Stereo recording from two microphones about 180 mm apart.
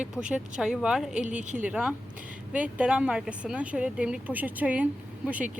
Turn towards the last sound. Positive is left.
turn(degrees=-10)  # may be behind; listen again after turning